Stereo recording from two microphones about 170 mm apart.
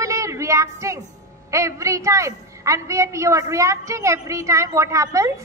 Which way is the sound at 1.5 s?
20° right (ahead or behind).